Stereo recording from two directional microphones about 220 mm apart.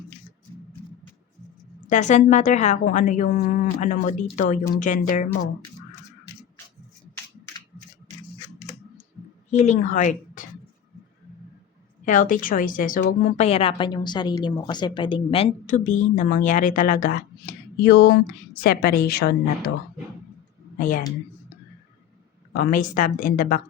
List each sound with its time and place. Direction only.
1.9 s a woman's voice: 35° left (ahead or behind)
9.5 s a woman's voice: 30° left (ahead or behind)
12.0 s a woman's voice: 35° left (ahead or behind)
20.7 s speech: 40° left (ahead or behind)
22.5 s a woman's voice: 40° left (ahead or behind)